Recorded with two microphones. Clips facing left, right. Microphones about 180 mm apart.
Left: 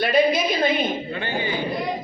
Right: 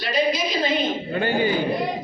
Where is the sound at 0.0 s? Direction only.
55° left (ahead or behind).